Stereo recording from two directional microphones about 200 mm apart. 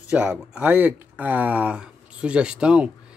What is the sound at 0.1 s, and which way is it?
Speech, 5° right (ahead or behind).